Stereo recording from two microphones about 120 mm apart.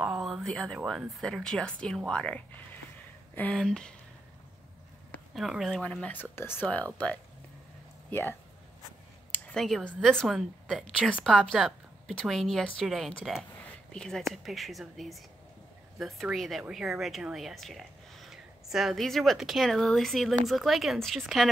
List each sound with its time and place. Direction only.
0.0 s a sound: centre (ahead or behind)
0.8 s speech: centre (ahead or behind)
5.3 s speech: centre (ahead or behind); by 6.9 s 15° left (ahead or behind)
8.1 s speech: 20° left (ahead or behind)
9.5 s speech: 5° left (ahead or behind)